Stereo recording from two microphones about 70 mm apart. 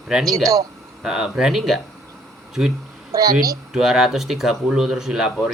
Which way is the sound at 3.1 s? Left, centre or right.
Right.